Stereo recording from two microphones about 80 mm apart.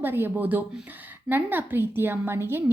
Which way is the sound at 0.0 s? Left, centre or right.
Right.